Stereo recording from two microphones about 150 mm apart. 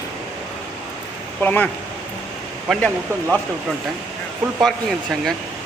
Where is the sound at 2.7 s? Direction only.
5° left (ahead or behind).